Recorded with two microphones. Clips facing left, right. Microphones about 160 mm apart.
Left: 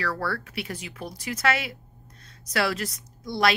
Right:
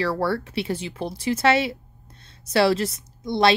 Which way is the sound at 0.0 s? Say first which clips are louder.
Right 6 dB; 25° right (ahead or behind).